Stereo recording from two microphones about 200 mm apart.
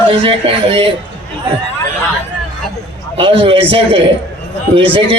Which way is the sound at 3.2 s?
25° right (ahead or behind).